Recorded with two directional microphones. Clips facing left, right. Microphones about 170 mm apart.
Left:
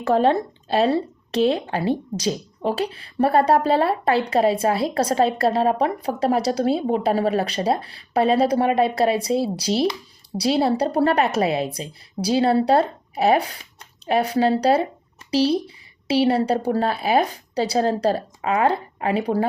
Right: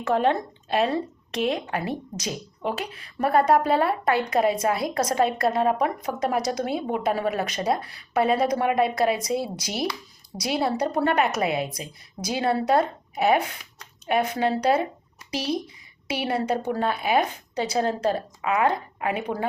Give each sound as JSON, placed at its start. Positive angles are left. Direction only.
{"t": 0.0, "sound": "speech", "side_deg": 35}